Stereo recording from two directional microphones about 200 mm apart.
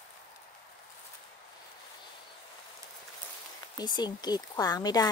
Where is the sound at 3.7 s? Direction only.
20° left (ahead or behind).